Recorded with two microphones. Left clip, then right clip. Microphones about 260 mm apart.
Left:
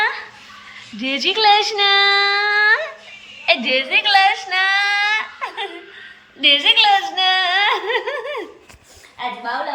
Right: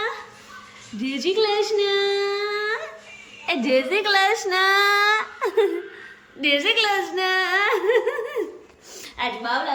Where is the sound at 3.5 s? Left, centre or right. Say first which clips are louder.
Left 4 dB; centre.